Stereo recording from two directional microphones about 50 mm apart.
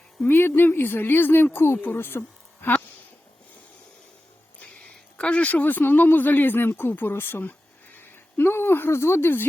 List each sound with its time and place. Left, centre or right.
0.3 s speech: left
5.1 s speech: left